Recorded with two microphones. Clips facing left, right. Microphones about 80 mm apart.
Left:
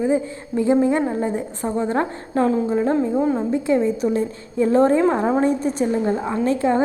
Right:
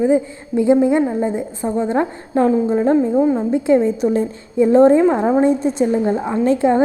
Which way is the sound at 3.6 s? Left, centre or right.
Right.